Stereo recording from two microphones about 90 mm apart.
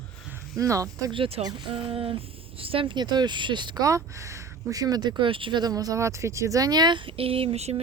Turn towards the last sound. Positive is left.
turn(degrees=-90)